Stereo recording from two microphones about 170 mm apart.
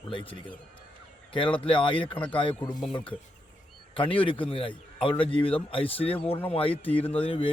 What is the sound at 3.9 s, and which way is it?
A man's voice, 30° left (ahead or behind).